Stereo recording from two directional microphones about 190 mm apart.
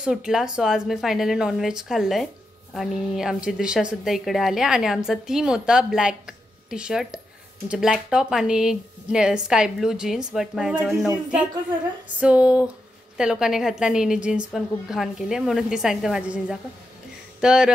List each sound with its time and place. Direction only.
0.0 s a woman's voice: 5° right (ahead or behind)
12.2 s a sound: 5° right (ahead or behind)
13.2 s a woman's voice: 5° right (ahead or behind)